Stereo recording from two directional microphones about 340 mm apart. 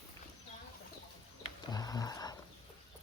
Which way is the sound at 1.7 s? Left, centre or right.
Centre.